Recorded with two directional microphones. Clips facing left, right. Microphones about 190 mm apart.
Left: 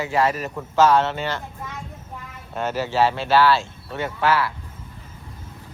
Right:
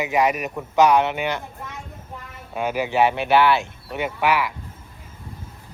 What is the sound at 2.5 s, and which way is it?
A man's voice, 10° right (ahead or behind).